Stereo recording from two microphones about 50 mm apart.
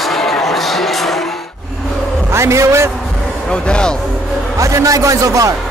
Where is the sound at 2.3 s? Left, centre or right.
Right.